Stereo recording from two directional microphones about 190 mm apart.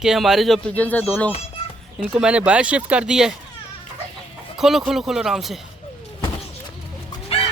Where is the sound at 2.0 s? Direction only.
5° right (ahead or behind).